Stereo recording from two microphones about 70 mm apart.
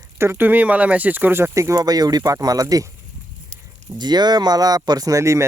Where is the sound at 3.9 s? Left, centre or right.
Right.